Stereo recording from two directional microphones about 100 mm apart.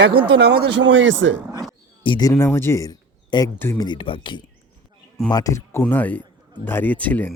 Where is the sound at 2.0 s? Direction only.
55° left (ahead or behind).